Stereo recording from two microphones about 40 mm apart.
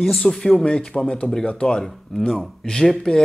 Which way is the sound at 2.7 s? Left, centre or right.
Centre.